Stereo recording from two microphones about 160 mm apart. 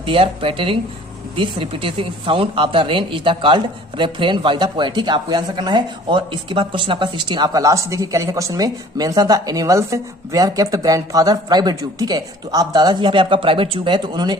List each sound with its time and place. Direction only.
0.0 s speech: 35° right (ahead or behind)